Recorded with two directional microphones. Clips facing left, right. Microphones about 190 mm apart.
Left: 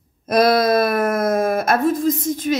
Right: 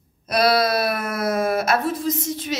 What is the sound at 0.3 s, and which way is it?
Speech, 50° left (ahead or behind).